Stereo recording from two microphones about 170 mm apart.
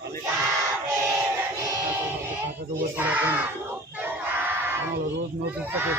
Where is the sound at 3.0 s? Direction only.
10° right (ahead or behind).